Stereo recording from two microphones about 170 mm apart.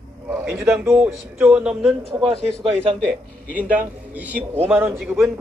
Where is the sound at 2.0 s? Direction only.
35° right (ahead or behind).